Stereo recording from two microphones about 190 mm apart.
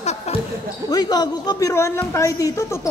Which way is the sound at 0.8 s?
20° left (ahead or behind).